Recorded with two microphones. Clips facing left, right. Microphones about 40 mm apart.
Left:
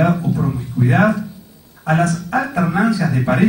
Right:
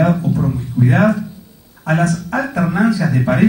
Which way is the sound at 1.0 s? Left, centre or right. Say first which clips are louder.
Right 1 dB; centre.